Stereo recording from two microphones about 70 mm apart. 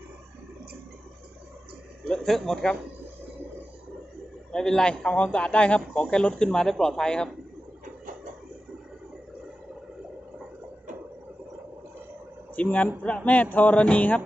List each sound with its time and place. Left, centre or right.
2.0 s speech: centre
4.5 s speech: centre
12.5 s speech: left